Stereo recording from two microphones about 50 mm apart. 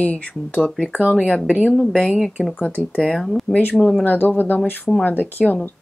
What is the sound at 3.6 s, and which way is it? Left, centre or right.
Speech, left.